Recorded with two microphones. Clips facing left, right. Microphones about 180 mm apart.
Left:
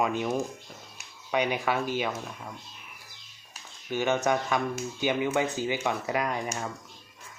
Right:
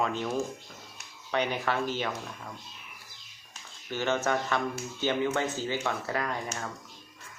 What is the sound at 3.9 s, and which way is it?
Speech, 15° left (ahead or behind).